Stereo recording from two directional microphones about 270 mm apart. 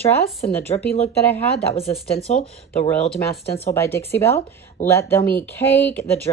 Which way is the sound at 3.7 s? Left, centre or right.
Centre.